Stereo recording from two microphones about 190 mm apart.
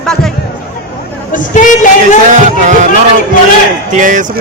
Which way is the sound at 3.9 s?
40° right (ahead or behind).